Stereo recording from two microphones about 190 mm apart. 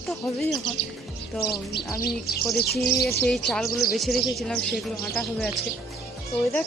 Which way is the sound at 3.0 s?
55° left (ahead or behind).